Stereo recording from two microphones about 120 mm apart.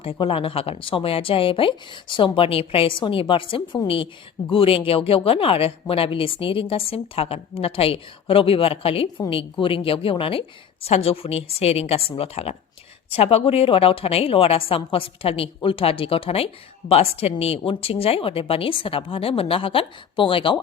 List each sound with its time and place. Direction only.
0.0 s a woman's voice: 50° left (ahead or behind)